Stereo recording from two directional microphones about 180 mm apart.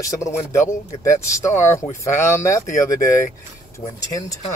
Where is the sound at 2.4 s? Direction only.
15° left (ahead or behind).